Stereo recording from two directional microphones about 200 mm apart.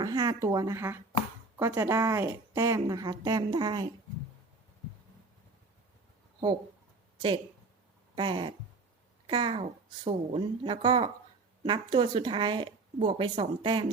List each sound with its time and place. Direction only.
0.0 s a woman's voice: 20° right (ahead or behind)
8.1 s a sound: 25° right (ahead or behind)
9.2 s speech: 25° right (ahead or behind)